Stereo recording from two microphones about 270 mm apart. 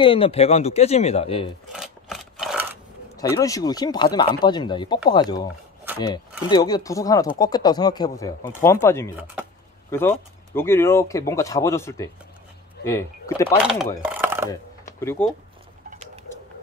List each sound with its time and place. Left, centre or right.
0.0 s speech: centre
1.7 s a sound: centre
3.2 s speech: centre
13.6 s chopping: centre
14.0 s a sound: centre
15.0 s speech: centre